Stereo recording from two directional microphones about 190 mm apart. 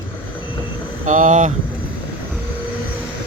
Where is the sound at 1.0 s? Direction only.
40° right (ahead or behind).